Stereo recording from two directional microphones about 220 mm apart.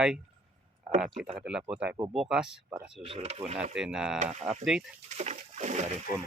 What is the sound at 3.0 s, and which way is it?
Speech, 25° right (ahead or behind).